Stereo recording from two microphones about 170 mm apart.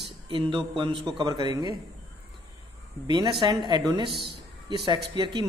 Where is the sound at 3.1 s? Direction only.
25° right (ahead or behind).